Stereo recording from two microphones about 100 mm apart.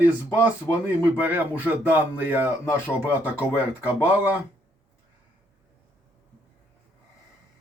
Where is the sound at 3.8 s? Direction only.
15° right (ahead or behind).